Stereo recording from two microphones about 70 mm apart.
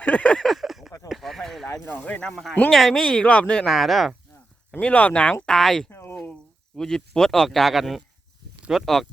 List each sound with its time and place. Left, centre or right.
0.0 s a sound: centre
0.4 s a sound: centre
1.9 s speech: left
2.3 s speech: centre
3.7 s speech: centre
4.8 s speech: centre
5.5 s speech: centre
5.9 s a sound: left
6.7 s speech: centre